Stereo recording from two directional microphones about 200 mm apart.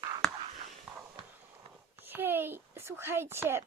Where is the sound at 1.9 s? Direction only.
10° right (ahead or behind).